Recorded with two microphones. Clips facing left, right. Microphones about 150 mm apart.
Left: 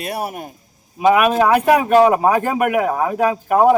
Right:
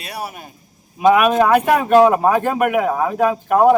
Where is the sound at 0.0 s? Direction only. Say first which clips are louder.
Left 5 dB; 50° left (ahead or behind).